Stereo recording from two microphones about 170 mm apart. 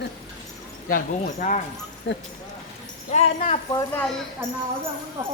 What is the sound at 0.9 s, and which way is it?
Speech, 55° left (ahead or behind).